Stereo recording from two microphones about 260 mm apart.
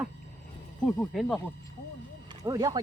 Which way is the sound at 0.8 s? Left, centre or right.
Centre.